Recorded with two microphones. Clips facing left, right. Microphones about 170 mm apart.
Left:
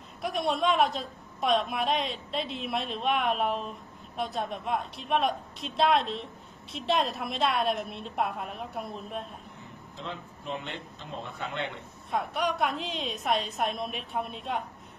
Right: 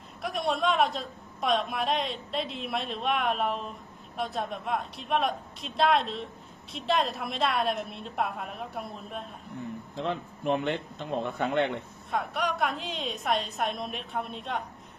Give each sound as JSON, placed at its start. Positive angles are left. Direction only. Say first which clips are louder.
{"t": 0.2, "sound": "a woman's voice", "louder": "even", "side_deg": 0}
{"t": 9.9, "sound": "a man's voice", "louder": "right 7 dB", "side_deg": -60}
{"t": 12.1, "sound": "a woman's voice", "louder": "left 1 dB", "side_deg": 0}